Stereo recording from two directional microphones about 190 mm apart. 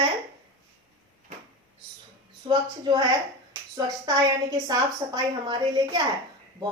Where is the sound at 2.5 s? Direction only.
20° right (ahead or behind).